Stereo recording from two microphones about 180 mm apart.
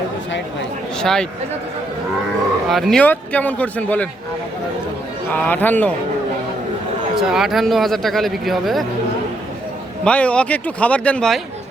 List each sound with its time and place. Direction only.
0.9 s speech: 5° left (ahead or behind)
2.6 s a man's voice: centre (ahead or behind)
5.3 s a man's voice: 10° left (ahead or behind)
7.2 s speech: 5° right (ahead or behind)
10.0 s a man's voice: 5° left (ahead or behind)